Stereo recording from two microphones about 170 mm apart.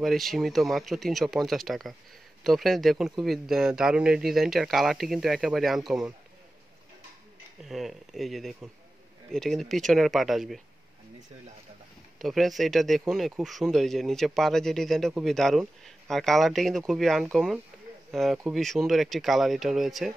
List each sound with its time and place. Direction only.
0.0 s speech: centre (ahead or behind)
7.6 s speech: centre (ahead or behind)
12.2 s speech: centre (ahead or behind)